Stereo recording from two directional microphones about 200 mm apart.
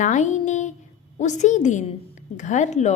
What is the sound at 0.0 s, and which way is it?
A woman's voice, 35° left (ahead or behind).